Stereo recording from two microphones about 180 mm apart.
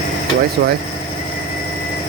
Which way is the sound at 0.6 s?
55° right (ahead or behind).